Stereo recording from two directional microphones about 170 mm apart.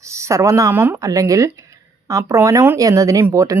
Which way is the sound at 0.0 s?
15° right (ahead or behind).